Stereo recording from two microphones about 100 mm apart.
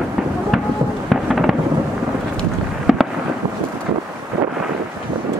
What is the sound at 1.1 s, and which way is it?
Fireworks, centre (ahead or behind).